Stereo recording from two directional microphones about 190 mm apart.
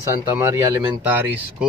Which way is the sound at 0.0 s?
15° right (ahead or behind).